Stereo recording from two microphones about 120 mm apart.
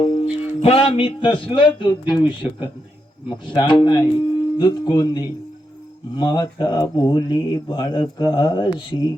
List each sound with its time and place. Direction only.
0.0 s music: 50° left (ahead or behind)
0.6 s a man's voice: 50° left (ahead or behind)
3.2 s speech: 40° left (ahead or behind)